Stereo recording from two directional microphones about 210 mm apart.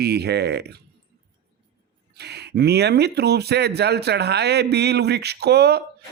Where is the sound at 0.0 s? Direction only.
50° right (ahead or behind).